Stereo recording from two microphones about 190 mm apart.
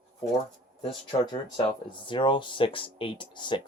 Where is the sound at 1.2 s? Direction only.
20° left (ahead or behind).